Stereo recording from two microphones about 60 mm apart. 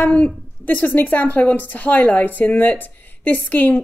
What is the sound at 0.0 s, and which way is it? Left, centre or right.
A woman's voice, left.